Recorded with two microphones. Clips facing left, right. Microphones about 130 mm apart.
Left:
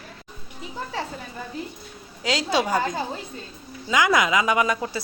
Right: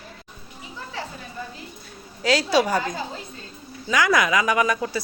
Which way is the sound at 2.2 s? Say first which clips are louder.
Right 3 dB; 20° left (ahead or behind).